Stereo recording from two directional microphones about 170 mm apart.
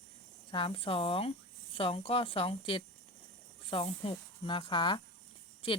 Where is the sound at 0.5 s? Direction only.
30° left (ahead or behind).